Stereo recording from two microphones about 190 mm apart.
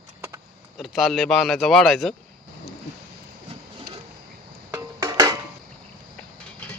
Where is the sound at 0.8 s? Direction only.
Centre (ahead or behind).